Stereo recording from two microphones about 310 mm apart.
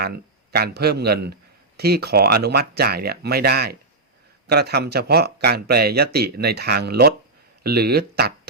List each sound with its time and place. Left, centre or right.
0.0 s a man's voice: right